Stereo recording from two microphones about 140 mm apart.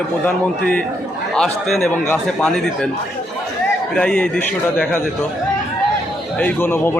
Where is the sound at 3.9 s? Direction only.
5° left (ahead or behind).